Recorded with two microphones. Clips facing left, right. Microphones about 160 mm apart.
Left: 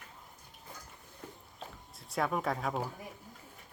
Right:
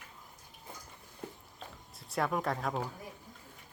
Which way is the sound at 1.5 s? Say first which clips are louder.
Left 1 dB; centre (ahead or behind).